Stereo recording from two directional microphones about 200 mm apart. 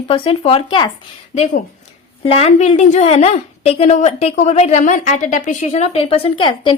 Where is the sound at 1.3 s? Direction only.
35° left (ahead or behind).